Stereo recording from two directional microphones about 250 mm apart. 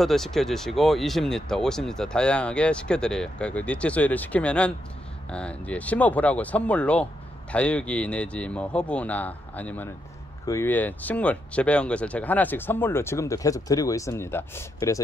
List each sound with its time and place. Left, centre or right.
0.0 s speech: centre